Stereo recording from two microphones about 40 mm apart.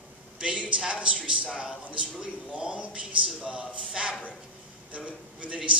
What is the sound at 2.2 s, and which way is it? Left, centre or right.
A man's voice, right.